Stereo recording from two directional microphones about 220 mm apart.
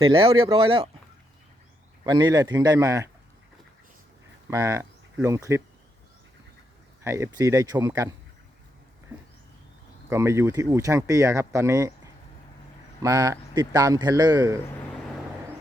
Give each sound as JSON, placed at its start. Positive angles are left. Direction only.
{"t": 0.0, "sound": "speech", "side_deg": -25}
{"t": 2.0, "sound": "speech", "side_deg": -20}
{"t": 4.4, "sound": "speech", "side_deg": -15}
{"t": 7.0, "sound": "speech", "side_deg": -15}
{"t": 10.1, "sound": "speech", "side_deg": -10}